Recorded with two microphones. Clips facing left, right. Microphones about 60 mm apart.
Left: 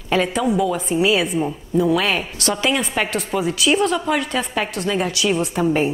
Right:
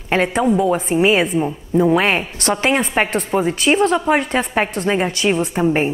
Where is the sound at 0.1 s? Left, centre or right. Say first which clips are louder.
Right 3 dB; right.